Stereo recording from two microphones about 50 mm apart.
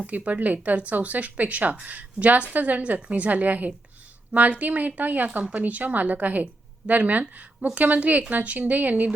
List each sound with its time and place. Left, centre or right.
0.0 s speech: right